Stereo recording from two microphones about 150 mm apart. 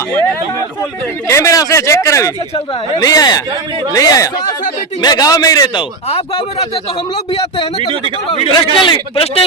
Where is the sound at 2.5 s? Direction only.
30° left (ahead or behind).